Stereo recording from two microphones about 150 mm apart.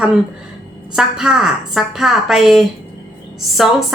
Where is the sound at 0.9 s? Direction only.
5° right (ahead or behind).